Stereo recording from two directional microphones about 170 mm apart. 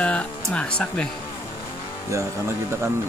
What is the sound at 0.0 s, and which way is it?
Speech, 10° left (ahead or behind).